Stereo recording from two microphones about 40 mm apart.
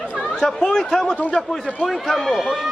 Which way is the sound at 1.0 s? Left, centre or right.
Left.